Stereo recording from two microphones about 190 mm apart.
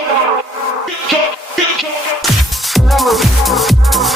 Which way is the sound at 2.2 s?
Centre (ahead or behind).